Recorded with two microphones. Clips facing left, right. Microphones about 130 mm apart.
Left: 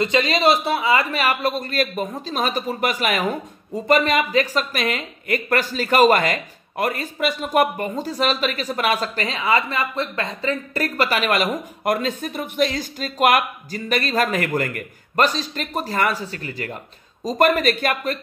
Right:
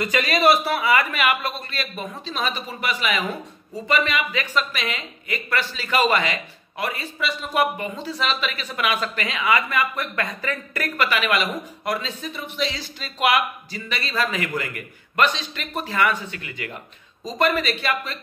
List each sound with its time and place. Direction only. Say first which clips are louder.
0.0 s a man's voice: left 1 dB; 25° left (ahead or behind); by 18.2 s 50° left (ahead or behind)